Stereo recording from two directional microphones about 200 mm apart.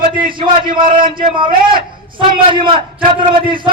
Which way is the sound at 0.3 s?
25° right (ahead or behind).